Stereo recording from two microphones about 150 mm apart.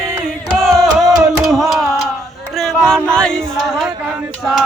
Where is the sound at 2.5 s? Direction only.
Centre (ahead or behind).